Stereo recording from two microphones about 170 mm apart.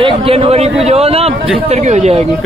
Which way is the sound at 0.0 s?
35° right (ahead or behind).